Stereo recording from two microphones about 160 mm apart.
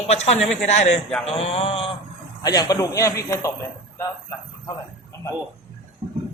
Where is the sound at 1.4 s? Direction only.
35° left (ahead or behind).